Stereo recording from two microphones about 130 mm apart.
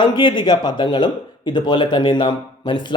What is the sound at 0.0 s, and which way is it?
Speech, 35° left (ahead or behind).